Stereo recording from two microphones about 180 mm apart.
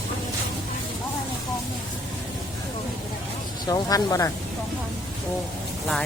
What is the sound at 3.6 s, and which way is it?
Speech, 20° left (ahead or behind).